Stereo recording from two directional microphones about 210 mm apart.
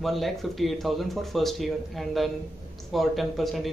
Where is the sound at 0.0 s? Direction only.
Centre (ahead or behind).